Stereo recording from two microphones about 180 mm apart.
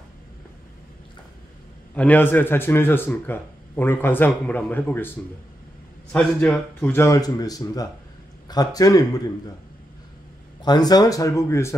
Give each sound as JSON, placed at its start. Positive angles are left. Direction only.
{"t": 2.0, "sound": "speech", "side_deg": 10}
{"t": 6.1, "sound": "speech", "side_deg": 5}
{"t": 10.6, "sound": "speech", "side_deg": 20}